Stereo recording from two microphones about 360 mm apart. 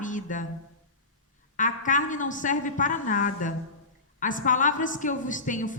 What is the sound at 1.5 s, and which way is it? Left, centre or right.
A woman's voice, left.